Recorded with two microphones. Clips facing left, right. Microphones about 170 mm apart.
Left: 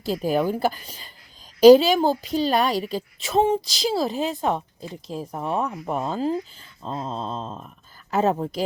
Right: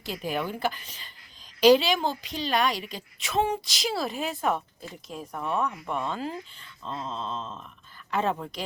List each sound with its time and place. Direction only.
0.0 s speech: 40° left (ahead or behind)